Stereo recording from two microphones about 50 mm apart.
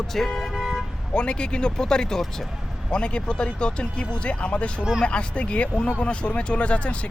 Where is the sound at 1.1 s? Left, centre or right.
Centre.